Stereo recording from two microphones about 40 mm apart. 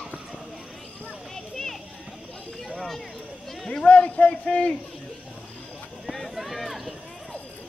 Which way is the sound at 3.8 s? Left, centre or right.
Left.